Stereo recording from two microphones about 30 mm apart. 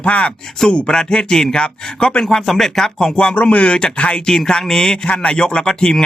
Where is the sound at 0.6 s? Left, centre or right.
Centre.